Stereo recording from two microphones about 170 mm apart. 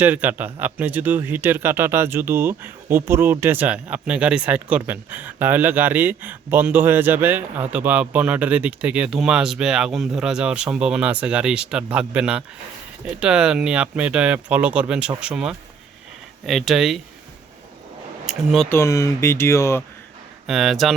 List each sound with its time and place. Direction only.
0.0 s speech: 10° right (ahead or behind)
18.3 s speech: centre (ahead or behind)
18.7 s speech: 15° left (ahead or behind)
20.5 s speech: centre (ahead or behind)